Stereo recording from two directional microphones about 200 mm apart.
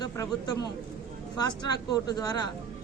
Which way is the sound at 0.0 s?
20° left (ahead or behind).